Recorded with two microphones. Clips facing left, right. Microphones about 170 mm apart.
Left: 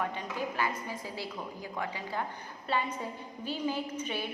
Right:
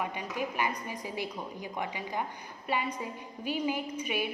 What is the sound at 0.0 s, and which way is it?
A woman's voice, 15° right (ahead or behind).